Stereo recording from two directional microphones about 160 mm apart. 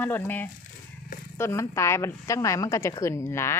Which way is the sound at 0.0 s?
15° left (ahead or behind).